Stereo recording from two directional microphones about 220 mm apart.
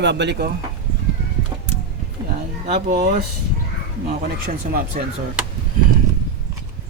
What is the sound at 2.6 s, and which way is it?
Speech, 35° right (ahead or behind).